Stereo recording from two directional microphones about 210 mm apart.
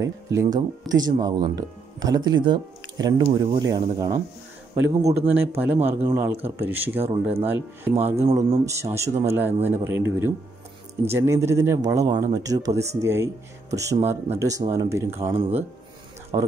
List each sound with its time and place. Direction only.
0.0 s speech: 15° right (ahead or behind)
5.0 s speech: 10° right (ahead or behind)
7.1 s speech: 25° right (ahead or behind)
7.4 s speech: 10° right (ahead or behind)
15.3 s speech: 30° right (ahead or behind)
16.3 s speech: 20° right (ahead or behind)